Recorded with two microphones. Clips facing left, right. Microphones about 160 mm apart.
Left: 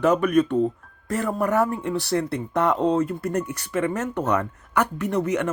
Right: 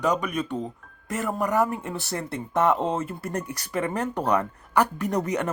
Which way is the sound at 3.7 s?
35° right (ahead or behind).